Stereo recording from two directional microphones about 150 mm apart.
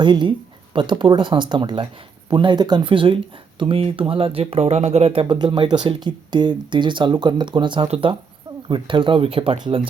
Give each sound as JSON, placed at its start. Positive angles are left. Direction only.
{"t": 0.0, "sound": "speech", "side_deg": -30}
{"t": 5.2, "sound": "speech", "side_deg": -35}
{"t": 7.9, "sound": "speech", "side_deg": -45}
{"t": 8.6, "sound": "speech", "side_deg": -35}